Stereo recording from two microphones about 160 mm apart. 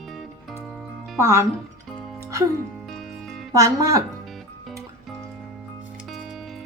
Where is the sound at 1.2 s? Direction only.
15° right (ahead or behind).